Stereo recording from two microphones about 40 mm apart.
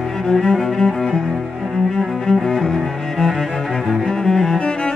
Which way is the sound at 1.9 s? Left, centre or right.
Centre.